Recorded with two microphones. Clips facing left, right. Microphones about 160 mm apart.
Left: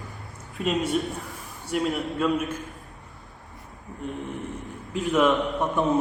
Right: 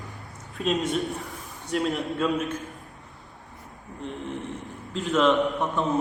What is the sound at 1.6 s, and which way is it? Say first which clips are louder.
Speech: even; 5° left (ahead or behind).